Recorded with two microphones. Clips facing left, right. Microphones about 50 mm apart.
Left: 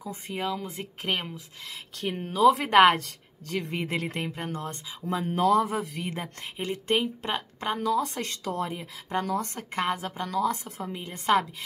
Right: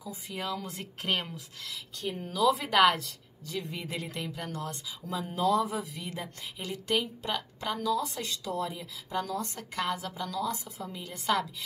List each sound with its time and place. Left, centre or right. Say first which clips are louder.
0.0 s speech: left 5 dB; left
0.4 s speech: left 4 dB; centre
2.0 s a woman's voice: left 4 dB; left